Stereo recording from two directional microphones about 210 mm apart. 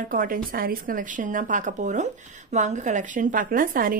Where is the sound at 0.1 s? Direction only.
40° right (ahead or behind).